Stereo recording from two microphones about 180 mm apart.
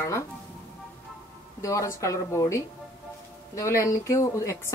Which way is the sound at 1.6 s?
15° left (ahead or behind).